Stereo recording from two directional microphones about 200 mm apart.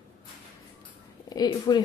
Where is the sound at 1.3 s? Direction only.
20° left (ahead or behind).